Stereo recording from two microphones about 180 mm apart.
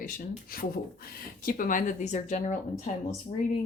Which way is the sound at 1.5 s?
50° left (ahead or behind).